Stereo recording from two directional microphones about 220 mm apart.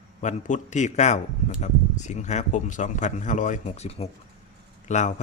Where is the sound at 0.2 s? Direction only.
35° left (ahead or behind).